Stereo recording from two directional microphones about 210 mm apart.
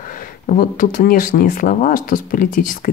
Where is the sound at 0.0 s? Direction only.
40° left (ahead or behind).